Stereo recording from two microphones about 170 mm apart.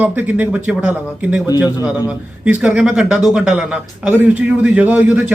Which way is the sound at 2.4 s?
5° right (ahead or behind).